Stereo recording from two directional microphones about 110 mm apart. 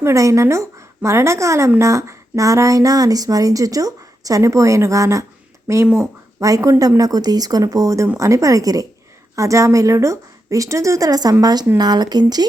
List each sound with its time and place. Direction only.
0.0 s speech: 30° right (ahead or behind)